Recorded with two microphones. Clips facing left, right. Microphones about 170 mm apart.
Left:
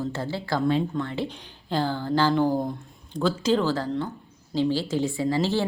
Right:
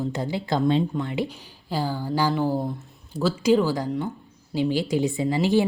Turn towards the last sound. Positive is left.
turn(degrees=-15)  # may be behind; listen again after turning